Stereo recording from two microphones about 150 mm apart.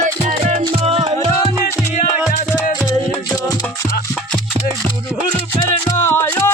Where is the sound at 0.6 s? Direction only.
40° right (ahead or behind).